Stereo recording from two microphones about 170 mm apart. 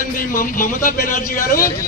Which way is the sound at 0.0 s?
55° left (ahead or behind).